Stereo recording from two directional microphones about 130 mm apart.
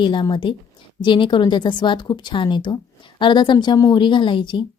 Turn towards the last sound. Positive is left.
turn(degrees=40)  # may be behind; listen again after turning